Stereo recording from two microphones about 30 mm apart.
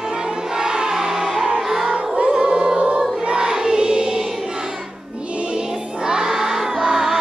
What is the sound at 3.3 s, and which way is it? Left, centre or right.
Music, right.